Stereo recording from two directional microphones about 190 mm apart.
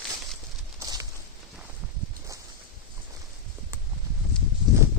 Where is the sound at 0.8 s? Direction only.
20° right (ahead or behind).